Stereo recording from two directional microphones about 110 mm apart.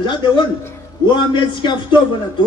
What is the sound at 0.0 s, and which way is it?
A woman's voice, 45° left (ahead or behind).